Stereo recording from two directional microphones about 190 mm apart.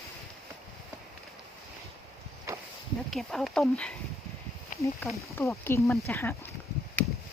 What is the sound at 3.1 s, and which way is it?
Speech, centre (ahead or behind).